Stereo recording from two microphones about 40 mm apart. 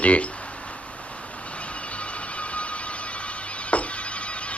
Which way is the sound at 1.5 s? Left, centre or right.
Left.